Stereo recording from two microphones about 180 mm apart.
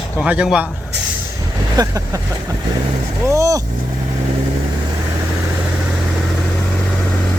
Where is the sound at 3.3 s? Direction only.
15° right (ahead or behind).